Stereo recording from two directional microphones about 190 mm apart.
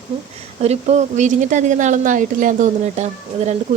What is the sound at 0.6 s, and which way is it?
A woman's voice, 35° right (ahead or behind).